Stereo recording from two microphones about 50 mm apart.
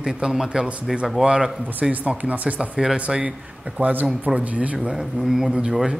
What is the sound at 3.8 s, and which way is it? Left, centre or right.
A man's voice, right.